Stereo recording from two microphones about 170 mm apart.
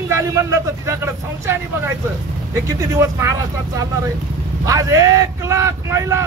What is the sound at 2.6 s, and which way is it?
Speech, 20° right (ahead or behind).